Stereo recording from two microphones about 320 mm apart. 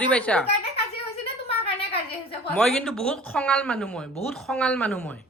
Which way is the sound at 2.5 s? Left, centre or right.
Centre.